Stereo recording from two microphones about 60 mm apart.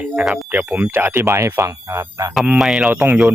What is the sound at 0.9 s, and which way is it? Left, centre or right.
Speech, right.